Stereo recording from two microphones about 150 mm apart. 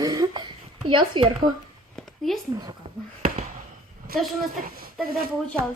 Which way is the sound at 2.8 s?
45° right (ahead or behind).